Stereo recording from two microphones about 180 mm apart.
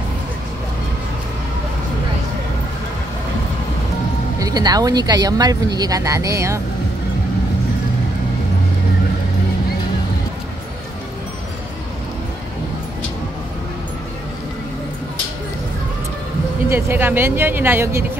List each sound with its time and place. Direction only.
4.4 s speech: 20° right (ahead or behind)
16.6 s speech: 10° right (ahead or behind)